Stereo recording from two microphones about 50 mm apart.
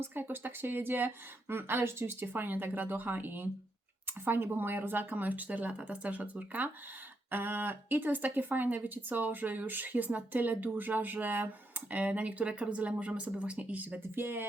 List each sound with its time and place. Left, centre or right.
0.0 s speech: right
7.3 s speech: right
14.2 s speech: right